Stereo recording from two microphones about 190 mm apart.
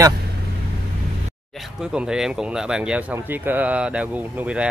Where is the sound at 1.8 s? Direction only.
5° right (ahead or behind).